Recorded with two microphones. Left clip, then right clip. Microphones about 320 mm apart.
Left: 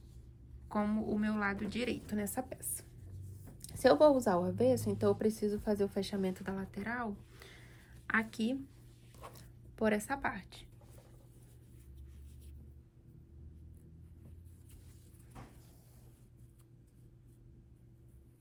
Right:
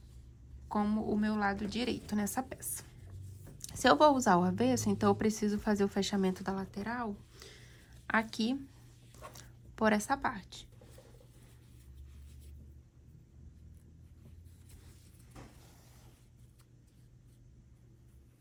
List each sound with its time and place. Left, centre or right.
0.7 s a woman's voice: centre